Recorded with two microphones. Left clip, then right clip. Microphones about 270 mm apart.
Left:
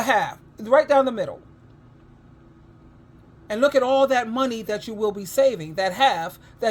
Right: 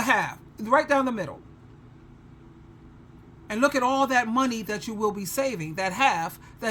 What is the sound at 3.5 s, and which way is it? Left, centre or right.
Speech, centre.